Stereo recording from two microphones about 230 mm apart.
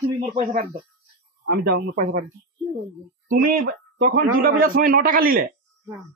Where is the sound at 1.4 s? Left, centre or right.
Right.